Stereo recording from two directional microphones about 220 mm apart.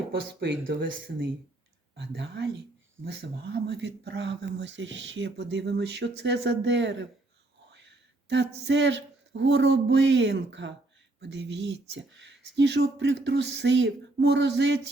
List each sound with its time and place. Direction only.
0.1 s speech: 45° right (ahead or behind)